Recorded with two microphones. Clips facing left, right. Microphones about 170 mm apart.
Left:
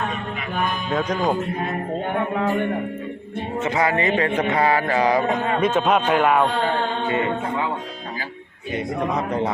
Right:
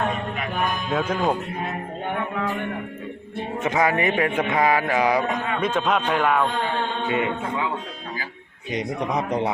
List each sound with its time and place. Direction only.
0.9 s speech: 5° right (ahead or behind)
2.1 s speech: 35° left (ahead or behind)
3.6 s speech: 15° right (ahead or behind)
5.3 s speech: 30° left (ahead or behind)
5.8 s speech: 10° left (ahead or behind)
7.1 s speech: 15° right (ahead or behind)
8.7 s speech: 15° right (ahead or behind)